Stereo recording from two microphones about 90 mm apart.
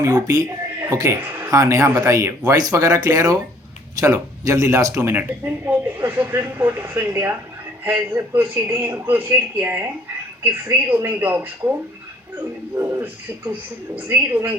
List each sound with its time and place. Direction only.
0.0 s a man's voice: 45° right (ahead or behind)
1.2 s speech: 20° right (ahead or behind)
1.5 s speech: 35° right (ahead or behind)
4.9 s speech: 20° right (ahead or behind)